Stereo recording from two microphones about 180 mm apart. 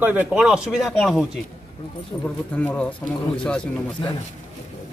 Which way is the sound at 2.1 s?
15° left (ahead or behind).